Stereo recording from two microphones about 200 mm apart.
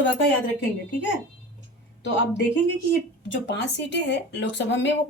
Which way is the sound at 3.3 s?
60° left (ahead or behind).